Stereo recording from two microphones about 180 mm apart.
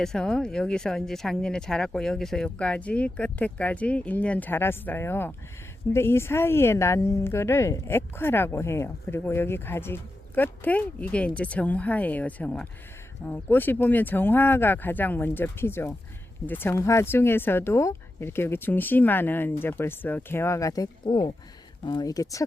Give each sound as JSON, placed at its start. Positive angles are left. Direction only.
{"t": 0.0, "sound": "speech", "side_deg": 5}